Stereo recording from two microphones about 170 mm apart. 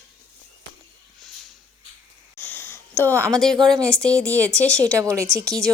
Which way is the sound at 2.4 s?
10° left (ahead or behind).